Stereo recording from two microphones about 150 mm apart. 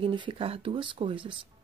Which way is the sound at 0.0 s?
35° right (ahead or behind).